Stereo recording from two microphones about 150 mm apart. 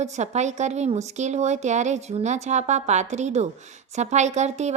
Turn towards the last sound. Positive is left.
turn(degrees=-50)  # may be behind; listen again after turning